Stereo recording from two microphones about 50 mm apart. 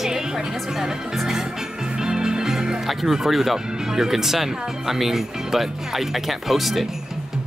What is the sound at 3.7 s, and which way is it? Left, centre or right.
Speech, centre.